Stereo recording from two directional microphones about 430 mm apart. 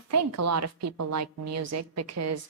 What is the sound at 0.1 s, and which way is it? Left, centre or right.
A woman's voice, right.